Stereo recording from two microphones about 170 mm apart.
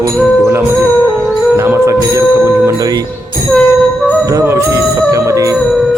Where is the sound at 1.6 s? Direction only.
15° right (ahead or behind).